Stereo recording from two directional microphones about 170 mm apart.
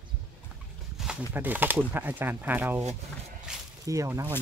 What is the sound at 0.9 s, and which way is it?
Speech, 5° right (ahead or behind).